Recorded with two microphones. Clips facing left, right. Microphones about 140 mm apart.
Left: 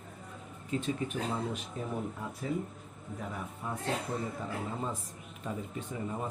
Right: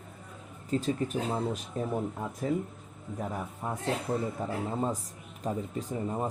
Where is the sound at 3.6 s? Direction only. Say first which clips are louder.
Right 3 dB; 40° right (ahead or behind).